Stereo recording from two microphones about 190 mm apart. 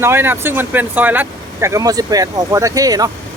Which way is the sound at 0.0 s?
10° right (ahead or behind).